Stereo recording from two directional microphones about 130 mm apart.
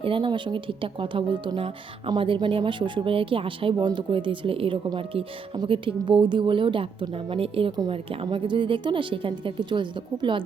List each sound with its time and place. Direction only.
0.0 s speech: 40° right (ahead or behind)